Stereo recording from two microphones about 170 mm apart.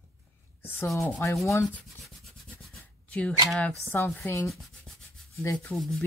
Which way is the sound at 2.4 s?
5° left (ahead or behind).